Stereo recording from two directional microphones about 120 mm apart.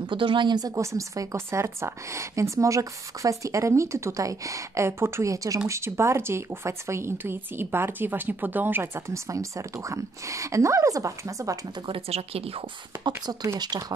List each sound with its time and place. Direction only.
0.0 s speech: 45° right (ahead or behind); by 11.5 s 25° right (ahead or behind)
11.9 s speech: 55° right (ahead or behind)
13.0 s speech: 35° right (ahead or behind)